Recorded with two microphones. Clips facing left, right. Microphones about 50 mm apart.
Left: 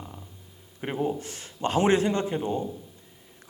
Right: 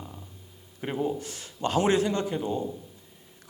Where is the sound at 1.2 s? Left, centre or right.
Left.